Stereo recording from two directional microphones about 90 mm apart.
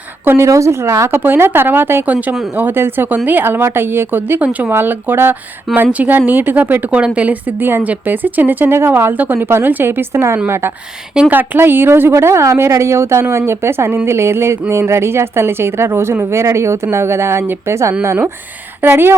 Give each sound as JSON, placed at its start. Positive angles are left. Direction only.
{"t": 0.3, "sound": "a woman's voice", "side_deg": -30}